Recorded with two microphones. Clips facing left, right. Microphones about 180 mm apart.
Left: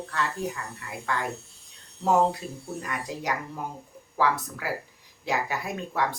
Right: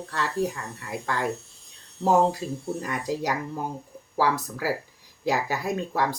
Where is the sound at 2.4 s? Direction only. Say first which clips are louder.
Right 5 dB; 35° right (ahead or behind).